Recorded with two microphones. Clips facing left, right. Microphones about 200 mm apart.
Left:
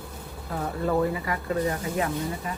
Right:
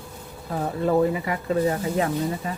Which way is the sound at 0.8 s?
20° right (ahead or behind).